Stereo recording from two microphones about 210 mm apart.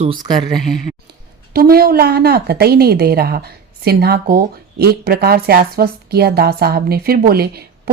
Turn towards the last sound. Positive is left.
turn(degrees=-45)  # may be behind; listen again after turning